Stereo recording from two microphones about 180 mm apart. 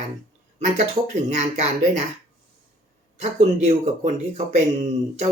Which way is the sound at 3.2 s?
40° right (ahead or behind).